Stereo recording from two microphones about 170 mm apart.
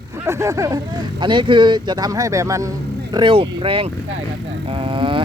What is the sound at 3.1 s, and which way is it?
Speech, 30° right (ahead or behind).